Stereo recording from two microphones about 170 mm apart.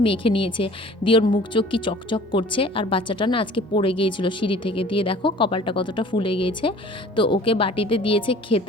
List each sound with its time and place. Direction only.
0.0 s a woman's voice: 30° left (ahead or behind)